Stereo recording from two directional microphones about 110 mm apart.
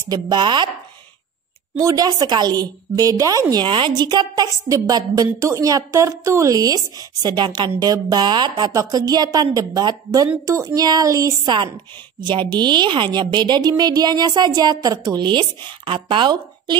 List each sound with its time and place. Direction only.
0.1 s chopping: 45° right (ahead or behind)
1.8 s speech: 35° right (ahead or behind)
11.4 s chopping: 45° right (ahead or behind)
12.2 s speech: 45° right (ahead or behind)